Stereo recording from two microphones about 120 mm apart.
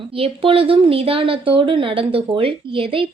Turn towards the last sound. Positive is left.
turn(degrees=-50)  # may be behind; listen again after turning